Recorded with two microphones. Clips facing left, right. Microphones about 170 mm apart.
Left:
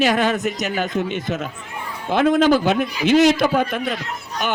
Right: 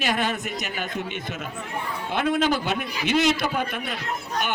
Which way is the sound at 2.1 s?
45° left (ahead or behind).